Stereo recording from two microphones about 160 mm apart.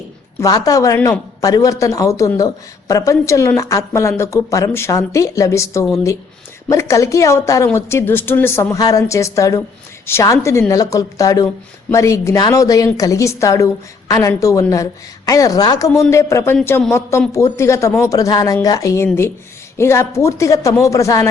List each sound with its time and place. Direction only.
0.3 s a woman's voice: 20° left (ahead or behind)